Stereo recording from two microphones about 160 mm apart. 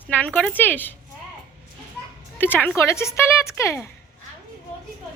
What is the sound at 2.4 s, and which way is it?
A woman's voice, 10° left (ahead or behind).